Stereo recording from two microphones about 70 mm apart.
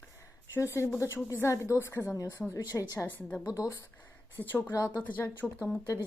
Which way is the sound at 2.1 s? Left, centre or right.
Left.